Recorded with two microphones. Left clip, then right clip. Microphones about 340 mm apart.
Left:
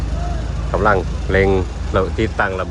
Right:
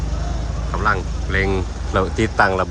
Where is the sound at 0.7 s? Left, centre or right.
Centre.